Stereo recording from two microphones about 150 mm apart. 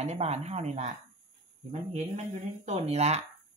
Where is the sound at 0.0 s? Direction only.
45° right (ahead or behind).